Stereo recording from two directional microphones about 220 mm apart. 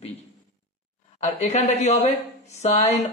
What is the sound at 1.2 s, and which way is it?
Speech, 30° left (ahead or behind).